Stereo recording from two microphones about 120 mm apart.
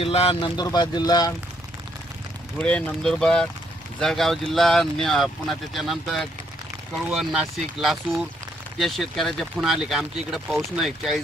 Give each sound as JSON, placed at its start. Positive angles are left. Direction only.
{"t": 0.0, "sound": "speech", "side_deg": 55}
{"t": 0.6, "sound": "speech", "side_deg": 35}
{"t": 2.6, "sound": "speech", "side_deg": 10}